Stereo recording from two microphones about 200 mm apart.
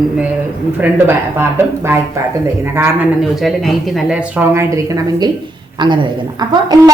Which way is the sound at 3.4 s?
Centre (ahead or behind).